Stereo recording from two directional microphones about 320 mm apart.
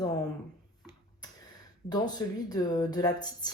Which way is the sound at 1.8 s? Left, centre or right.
Centre.